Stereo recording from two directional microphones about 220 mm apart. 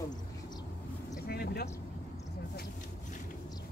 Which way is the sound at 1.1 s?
45° left (ahead or behind).